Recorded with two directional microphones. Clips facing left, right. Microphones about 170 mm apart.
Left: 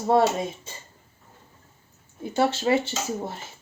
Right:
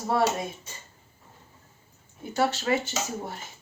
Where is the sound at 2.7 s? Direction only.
25° left (ahead or behind).